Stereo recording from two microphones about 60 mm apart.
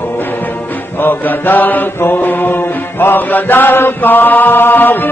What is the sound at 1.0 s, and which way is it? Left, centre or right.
Mantra, left.